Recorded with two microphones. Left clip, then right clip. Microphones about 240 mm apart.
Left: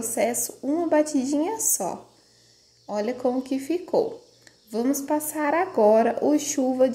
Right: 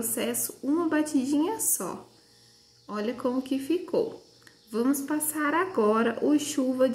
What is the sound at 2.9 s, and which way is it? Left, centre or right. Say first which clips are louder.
A woman's voice: left 4 dB; centre.